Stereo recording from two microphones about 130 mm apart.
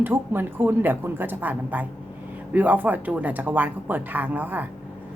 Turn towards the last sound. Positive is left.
turn(degrees=-15)  # may be behind; listen again after turning